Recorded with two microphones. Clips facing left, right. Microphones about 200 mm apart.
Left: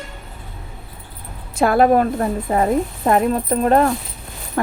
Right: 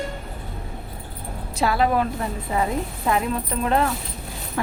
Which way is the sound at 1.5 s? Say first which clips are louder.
Left 7 dB; 50° left (ahead or behind).